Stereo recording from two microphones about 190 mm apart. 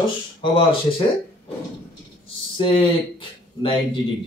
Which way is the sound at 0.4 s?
25° left (ahead or behind).